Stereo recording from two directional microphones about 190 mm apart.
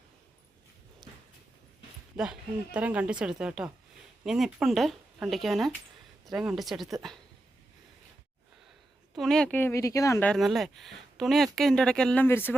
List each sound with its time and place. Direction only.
2.1 s speech: 5° right (ahead or behind)
9.1 s speech: centre (ahead or behind)